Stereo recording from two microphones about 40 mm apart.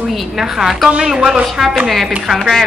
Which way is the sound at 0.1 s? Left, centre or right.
Centre.